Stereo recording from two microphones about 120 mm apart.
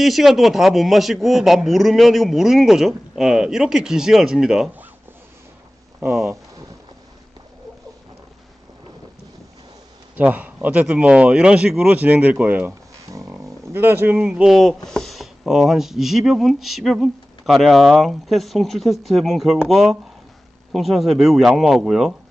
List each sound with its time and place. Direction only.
0.0 s a man's voice: centre (ahead or behind)
10.1 s a man's voice: 15° right (ahead or behind)